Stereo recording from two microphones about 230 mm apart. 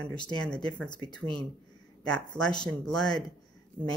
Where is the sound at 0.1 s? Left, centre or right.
Centre.